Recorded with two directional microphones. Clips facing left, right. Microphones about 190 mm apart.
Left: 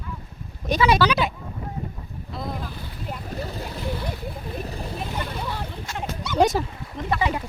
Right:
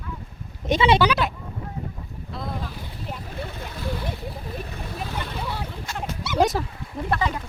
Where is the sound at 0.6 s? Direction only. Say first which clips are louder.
Right 1 dB; 25° right (ahead or behind).